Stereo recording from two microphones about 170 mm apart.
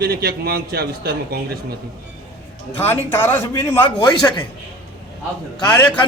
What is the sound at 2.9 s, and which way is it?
Speech, 10° left (ahead or behind).